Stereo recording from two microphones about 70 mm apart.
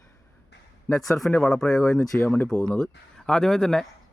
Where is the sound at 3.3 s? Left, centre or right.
Centre.